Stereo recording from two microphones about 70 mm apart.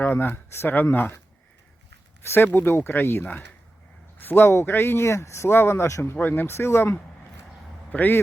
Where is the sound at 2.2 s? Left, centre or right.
Left.